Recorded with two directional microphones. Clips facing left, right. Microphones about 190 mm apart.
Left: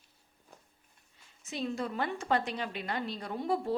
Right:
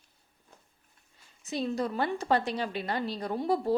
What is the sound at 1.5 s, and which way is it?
A woman's voice, 35° right (ahead or behind).